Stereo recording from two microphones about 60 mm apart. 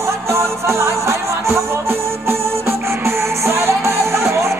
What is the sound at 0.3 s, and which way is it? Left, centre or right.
Music, right.